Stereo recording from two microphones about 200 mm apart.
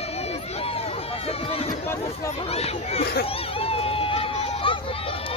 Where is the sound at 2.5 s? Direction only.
30° left (ahead or behind).